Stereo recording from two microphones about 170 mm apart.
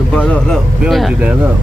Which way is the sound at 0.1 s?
5° left (ahead or behind).